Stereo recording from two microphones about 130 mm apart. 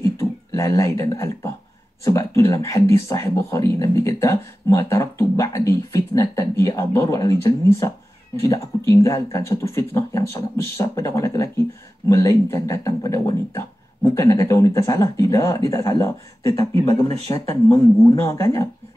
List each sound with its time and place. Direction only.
0.0 s speech: 20° left (ahead or behind)
18.1 s speech: 20° left (ahead or behind)